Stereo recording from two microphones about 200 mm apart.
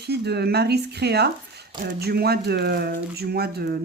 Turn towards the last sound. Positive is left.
turn(degrees=-50)  # may be behind; listen again after turning